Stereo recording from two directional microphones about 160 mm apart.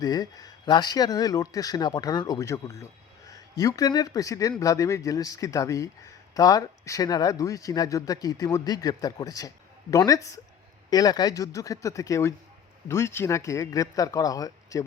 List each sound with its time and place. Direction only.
0.0 s speech: 25° left (ahead or behind)